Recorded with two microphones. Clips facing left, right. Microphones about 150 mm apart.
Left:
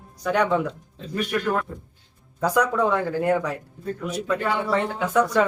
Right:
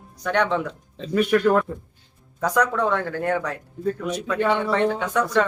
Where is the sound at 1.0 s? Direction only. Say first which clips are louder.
Right 8 dB; 90° right.